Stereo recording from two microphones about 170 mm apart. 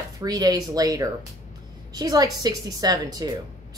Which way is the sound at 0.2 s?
20° right (ahead or behind).